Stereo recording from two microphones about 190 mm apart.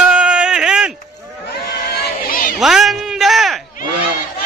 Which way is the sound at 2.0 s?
55° left (ahead or behind).